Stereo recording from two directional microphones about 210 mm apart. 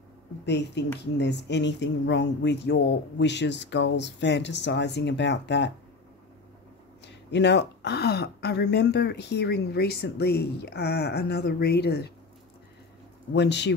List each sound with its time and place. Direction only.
0.5 s speech: 55° left (ahead or behind)
7.2 s speech: 55° left (ahead or behind)
13.3 s speech: 55° left (ahead or behind)